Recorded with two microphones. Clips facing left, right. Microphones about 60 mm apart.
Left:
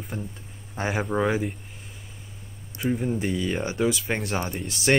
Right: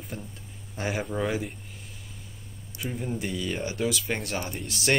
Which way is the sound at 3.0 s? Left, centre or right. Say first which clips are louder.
Left 5 dB; left.